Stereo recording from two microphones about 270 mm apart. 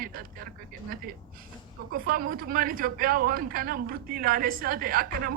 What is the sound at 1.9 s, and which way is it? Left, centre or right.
Speech, right.